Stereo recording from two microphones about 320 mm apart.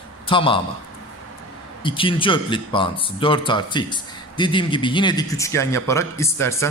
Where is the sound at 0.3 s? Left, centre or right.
Centre.